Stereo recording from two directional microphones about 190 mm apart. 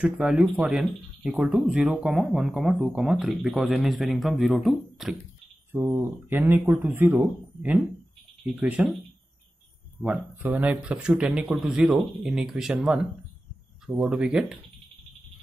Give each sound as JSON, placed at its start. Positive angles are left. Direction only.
{"t": 0.0, "sound": "speech", "side_deg": -5}
{"t": 5.7, "sound": "speech", "side_deg": -15}
{"t": 10.0, "sound": "speech", "side_deg": -10}